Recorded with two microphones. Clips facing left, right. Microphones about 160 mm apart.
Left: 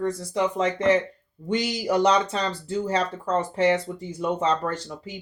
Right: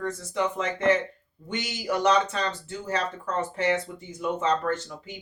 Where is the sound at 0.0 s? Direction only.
35° left (ahead or behind).